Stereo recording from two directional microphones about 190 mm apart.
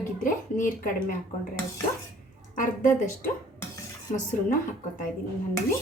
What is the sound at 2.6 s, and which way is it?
Speech, 45° left (ahead or behind).